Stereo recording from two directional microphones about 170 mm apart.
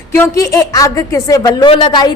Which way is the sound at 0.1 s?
15° left (ahead or behind).